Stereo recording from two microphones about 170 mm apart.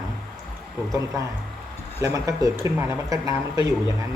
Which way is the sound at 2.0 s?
20° right (ahead or behind).